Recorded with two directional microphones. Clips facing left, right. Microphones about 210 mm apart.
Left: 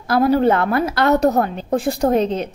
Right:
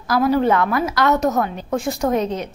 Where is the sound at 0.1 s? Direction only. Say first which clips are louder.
Left 2 dB; 30° left (ahead or behind).